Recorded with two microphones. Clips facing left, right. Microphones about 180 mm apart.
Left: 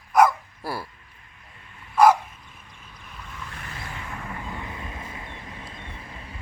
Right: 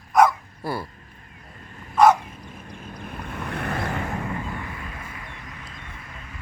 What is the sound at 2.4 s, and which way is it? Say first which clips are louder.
Vehicle: right 10 dB; 45° right (ahead or behind).